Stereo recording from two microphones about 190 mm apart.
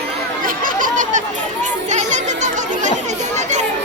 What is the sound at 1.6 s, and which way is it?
Children playing, 40° right (ahead or behind).